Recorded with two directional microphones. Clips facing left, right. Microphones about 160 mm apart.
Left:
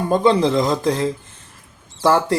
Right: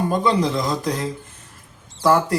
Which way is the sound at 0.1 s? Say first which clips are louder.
Left 4 dB; 25° left (ahead or behind).